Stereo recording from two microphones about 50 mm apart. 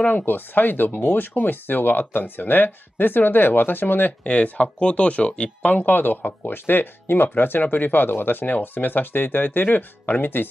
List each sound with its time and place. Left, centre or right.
0.1 s speech: left
4.2 s speech: left